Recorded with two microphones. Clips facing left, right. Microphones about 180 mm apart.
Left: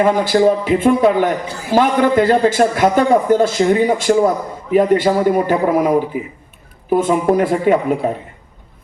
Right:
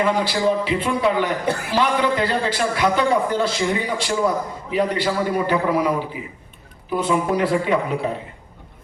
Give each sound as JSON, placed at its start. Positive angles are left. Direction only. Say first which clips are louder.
{"t": 0.0, "sound": "a man's voice", "louder": "left 7 dB", "side_deg": 50}
{"t": 1.5, "sound": "a man's voice", "louder": "right 5 dB", "side_deg": -60}
{"t": 1.7, "sound": "a man's voice", "louder": "left 8 dB", "side_deg": 50}